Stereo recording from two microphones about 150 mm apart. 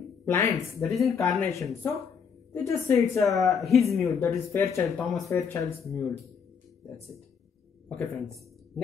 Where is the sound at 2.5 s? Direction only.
20° left (ahead or behind).